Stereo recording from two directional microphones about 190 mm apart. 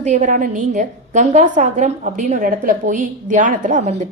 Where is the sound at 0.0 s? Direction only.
40° right (ahead or behind).